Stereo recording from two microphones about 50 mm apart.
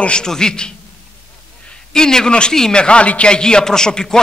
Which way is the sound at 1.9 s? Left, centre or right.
Centre.